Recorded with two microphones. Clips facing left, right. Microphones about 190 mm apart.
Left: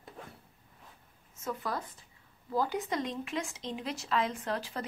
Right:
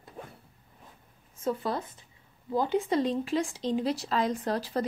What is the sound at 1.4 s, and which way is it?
A woman's voice, 30° right (ahead or behind).